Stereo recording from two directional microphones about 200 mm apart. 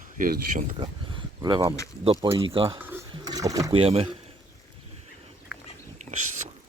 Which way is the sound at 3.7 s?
30° right (ahead or behind).